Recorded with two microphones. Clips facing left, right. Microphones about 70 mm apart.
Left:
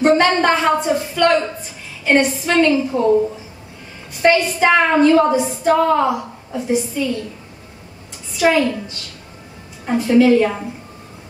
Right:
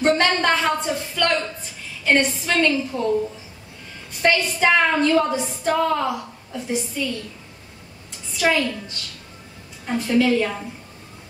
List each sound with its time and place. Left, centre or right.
0.0 s a woman's voice: centre
8.4 s a woman's voice: centre